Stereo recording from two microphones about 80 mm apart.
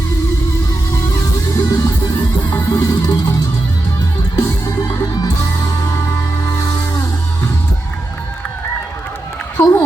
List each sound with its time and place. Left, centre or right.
1.1 s music: left
2.4 s music: left
4.4 s music: left
9.6 s a sound: left